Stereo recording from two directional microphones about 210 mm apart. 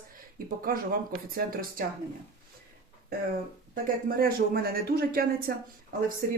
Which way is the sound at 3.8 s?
45° right (ahead or behind).